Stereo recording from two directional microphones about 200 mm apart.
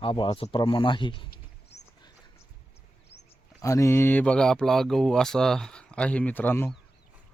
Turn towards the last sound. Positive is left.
turn(degrees=10)  # may be behind; listen again after turning